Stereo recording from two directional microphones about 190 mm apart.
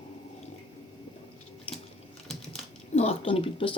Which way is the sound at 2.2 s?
5° left (ahead or behind).